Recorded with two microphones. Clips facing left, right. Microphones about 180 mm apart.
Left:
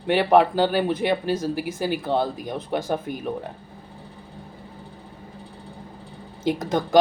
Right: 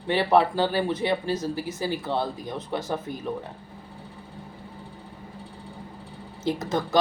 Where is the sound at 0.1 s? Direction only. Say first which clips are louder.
Left 3 dB; 55° left (ahead or behind).